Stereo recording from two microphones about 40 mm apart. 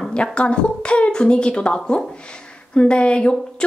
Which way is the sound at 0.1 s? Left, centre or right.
Left.